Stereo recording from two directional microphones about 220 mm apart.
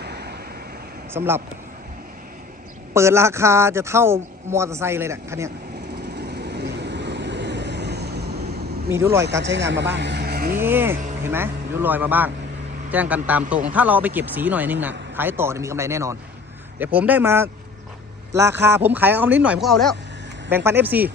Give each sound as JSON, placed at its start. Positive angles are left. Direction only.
{"t": 0.0, "sound": "vehicle", "side_deg": -45}
{"t": 1.1, "sound": "a man's voice", "side_deg": -10}
{"t": 2.9, "sound": "a man's voice", "side_deg": -10}
{"t": 6.1, "sound": "vehicle", "side_deg": -45}
{"t": 9.4, "sound": "speech", "side_deg": -55}
{"t": 10.6, "sound": "a man's voice", "side_deg": -10}
{"t": 20.7, "sound": "a man's voice", "side_deg": -10}